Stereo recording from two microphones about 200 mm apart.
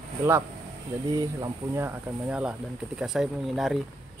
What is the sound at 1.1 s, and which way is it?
Speech, 15° right (ahead or behind).